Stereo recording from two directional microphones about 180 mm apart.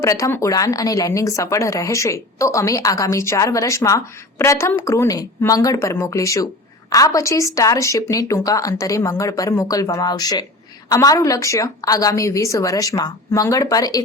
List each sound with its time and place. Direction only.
0.0 s a woman's voice: 15° left (ahead or behind)